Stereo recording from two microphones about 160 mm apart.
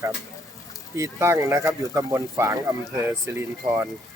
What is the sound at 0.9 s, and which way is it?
Speech, 15° right (ahead or behind).